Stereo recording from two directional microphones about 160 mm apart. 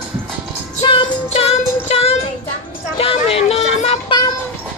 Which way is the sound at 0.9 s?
40° left (ahead or behind).